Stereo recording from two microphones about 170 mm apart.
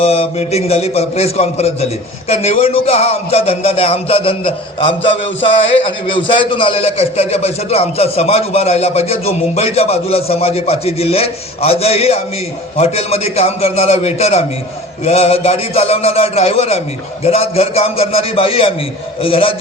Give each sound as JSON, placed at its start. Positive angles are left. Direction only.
{"t": 0.0, "sound": "a man's voice", "side_deg": 35}